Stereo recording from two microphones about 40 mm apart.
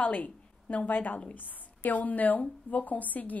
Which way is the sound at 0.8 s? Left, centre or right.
Left.